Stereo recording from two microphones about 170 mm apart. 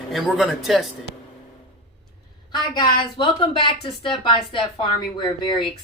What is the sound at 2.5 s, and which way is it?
A woman's voice, 25° left (ahead or behind).